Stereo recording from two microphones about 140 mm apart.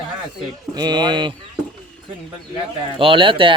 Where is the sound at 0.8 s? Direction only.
30° right (ahead or behind).